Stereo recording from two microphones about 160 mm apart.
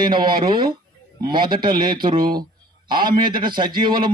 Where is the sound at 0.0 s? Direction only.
30° right (ahead or behind).